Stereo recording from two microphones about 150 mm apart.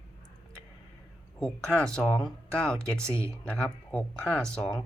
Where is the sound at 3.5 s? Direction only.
10° left (ahead or behind).